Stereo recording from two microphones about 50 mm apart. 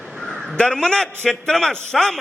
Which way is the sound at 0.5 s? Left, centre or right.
Centre.